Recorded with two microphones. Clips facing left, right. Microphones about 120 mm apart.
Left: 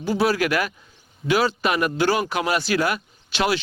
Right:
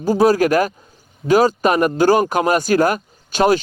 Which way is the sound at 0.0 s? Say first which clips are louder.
Right 7 dB; 40° right (ahead or behind).